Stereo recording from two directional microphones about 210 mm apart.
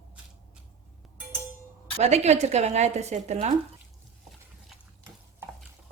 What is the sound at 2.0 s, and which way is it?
A woman's voice, 30° right (ahead or behind).